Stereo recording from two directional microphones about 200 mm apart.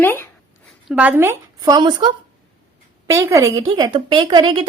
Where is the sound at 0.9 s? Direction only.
5° right (ahead or behind); by 4.6 s 20° right (ahead or behind).